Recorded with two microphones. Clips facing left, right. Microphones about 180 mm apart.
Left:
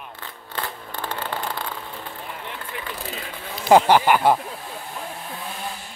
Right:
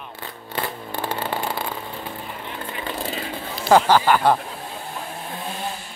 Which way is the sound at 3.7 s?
20° left (ahead or behind).